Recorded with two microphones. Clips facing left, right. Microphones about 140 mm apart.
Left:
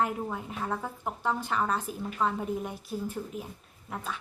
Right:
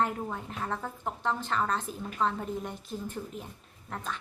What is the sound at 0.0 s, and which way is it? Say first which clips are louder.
Speech: left 1 dB; 5° left (ahead or behind).